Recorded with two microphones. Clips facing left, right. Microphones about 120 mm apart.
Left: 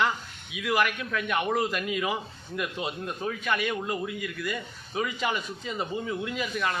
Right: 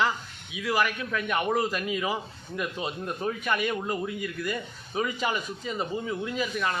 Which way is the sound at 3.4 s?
5° right (ahead or behind).